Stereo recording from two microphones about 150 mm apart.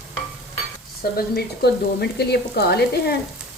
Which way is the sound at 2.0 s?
90° left.